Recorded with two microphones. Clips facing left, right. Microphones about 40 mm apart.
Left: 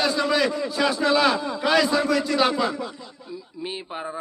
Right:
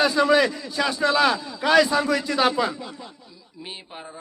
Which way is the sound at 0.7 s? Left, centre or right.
Centre.